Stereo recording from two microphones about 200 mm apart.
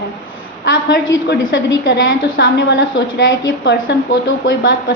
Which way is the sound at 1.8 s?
60° left (ahead or behind).